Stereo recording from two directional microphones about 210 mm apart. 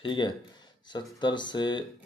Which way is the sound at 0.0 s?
25° left (ahead or behind).